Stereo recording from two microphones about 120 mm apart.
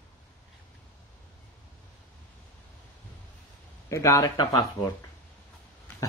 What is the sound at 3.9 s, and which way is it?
Speech, 25° left (ahead or behind).